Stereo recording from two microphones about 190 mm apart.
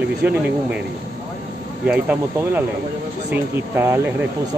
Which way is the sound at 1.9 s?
10° right (ahead or behind).